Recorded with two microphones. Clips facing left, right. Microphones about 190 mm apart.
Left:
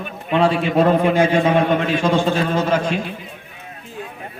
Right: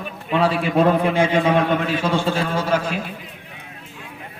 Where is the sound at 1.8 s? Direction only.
10° right (ahead or behind).